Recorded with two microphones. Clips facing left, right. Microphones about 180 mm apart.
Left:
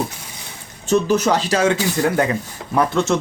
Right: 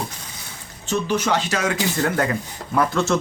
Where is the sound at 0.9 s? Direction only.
40° left (ahead or behind).